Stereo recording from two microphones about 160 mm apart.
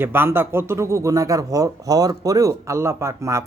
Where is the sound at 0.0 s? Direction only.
15° right (ahead or behind).